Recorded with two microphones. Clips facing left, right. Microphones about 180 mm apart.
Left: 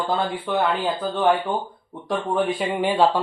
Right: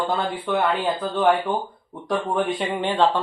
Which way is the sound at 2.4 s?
Centre (ahead or behind).